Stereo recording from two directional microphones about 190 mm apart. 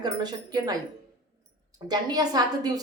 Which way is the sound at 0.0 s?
20° right (ahead or behind).